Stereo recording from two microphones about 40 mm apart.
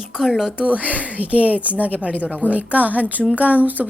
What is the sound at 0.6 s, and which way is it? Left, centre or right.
A woman's voice, right.